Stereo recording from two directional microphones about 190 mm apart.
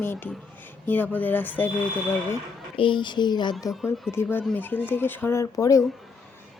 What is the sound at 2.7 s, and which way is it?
A child's voice, 25° left (ahead or behind).